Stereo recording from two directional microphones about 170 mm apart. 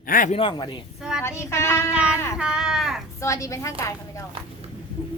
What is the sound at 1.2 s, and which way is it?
Child singing, 15° left (ahead or behind).